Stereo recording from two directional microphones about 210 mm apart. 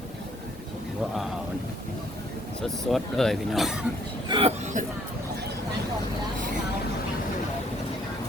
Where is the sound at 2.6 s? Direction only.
Centre (ahead or behind).